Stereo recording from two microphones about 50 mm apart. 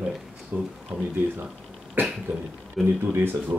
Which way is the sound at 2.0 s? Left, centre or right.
Right.